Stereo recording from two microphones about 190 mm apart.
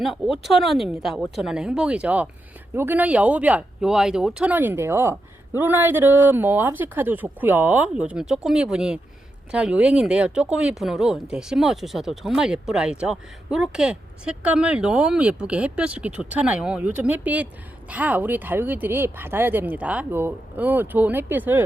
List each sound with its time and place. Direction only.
0.0 s speech: centre (ahead or behind)